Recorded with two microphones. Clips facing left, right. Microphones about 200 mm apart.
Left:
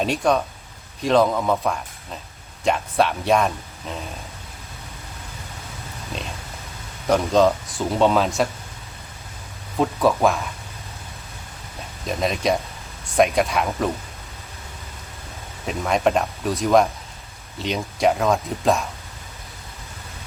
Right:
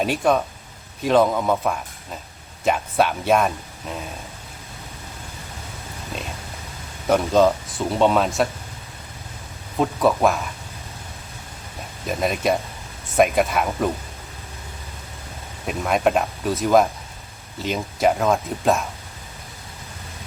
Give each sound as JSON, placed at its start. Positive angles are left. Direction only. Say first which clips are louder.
{"t": 0.0, "sound": "speech", "louder": "right 1 dB", "side_deg": -5}
{"t": 7.1, "sound": "speech", "louder": "even", "side_deg": 0}
{"t": 9.7, "sound": "speech", "louder": "even", "side_deg": 0}
{"t": 12.0, "sound": "speech", "louder": "even", "side_deg": -5}
{"t": 15.6, "sound": "speech", "louder": "even", "side_deg": -5}